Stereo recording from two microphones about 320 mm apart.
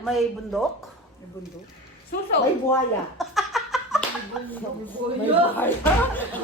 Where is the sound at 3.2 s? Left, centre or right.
Centre.